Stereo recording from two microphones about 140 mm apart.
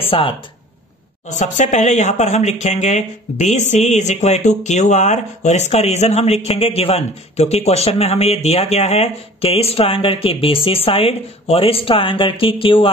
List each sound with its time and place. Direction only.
0.0 s speech: 45° left (ahead or behind)
1.3 s speech: 60° left (ahead or behind); by 12.9 s 40° left (ahead or behind)